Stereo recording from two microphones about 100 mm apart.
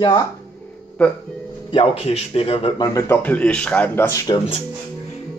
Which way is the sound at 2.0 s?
75° left (ahead or behind).